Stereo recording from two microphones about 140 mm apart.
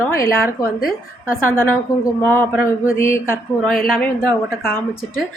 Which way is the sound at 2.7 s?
20° left (ahead or behind).